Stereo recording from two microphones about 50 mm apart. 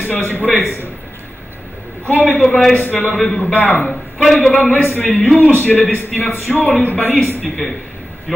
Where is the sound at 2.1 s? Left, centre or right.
Left.